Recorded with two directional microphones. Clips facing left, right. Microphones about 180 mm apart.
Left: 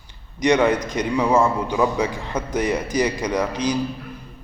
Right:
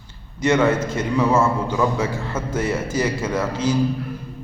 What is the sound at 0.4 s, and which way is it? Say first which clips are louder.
A man's voice: even; 15° left (ahead or behind).